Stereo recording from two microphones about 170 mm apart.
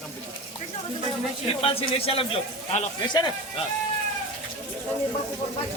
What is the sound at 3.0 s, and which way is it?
Speech, 25° left (ahead or behind).